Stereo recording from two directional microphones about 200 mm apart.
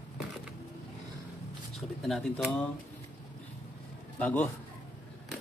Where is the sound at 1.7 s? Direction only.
Centre (ahead or behind).